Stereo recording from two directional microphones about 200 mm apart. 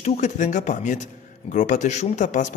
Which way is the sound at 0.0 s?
35° left (ahead or behind).